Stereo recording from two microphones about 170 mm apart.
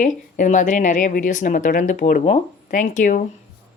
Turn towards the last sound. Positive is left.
turn(degrees=50)  # may be behind; listen again after turning